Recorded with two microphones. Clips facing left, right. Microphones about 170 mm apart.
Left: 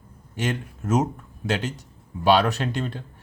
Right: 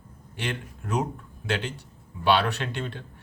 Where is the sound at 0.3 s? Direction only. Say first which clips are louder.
Left 5 dB; 45° left (ahead or behind).